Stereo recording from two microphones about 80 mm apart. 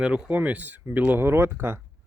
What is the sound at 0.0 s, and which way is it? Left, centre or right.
Speech, centre.